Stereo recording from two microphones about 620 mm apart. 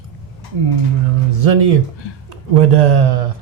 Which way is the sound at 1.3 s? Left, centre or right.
Right.